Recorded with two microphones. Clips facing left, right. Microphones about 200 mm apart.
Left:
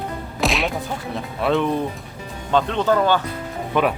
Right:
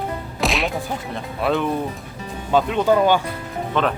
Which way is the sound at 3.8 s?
10° left (ahead or behind).